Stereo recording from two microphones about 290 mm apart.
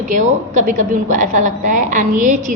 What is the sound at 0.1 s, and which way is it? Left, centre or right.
A woman's voice, right.